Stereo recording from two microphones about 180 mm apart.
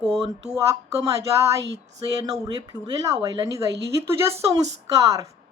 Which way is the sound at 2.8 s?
20° right (ahead or behind).